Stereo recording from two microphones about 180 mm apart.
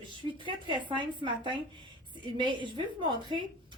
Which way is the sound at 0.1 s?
25° right (ahead or behind).